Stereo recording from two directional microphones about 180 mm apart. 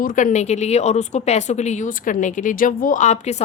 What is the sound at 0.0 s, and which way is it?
Speech, 45° left (ahead or behind).